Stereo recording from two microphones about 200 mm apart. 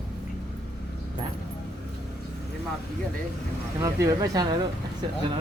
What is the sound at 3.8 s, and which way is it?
Speech, 15° right (ahead or behind).